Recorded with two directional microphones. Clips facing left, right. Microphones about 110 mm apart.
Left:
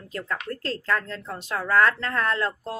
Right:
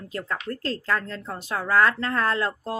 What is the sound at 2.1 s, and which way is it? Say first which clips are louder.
Speech: right 1 dB; 30° right (ahead or behind).